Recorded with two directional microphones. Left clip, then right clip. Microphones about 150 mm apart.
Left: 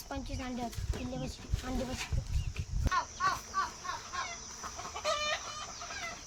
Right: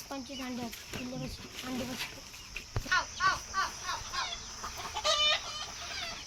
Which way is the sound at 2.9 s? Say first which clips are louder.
Right 3 dB; 90° left.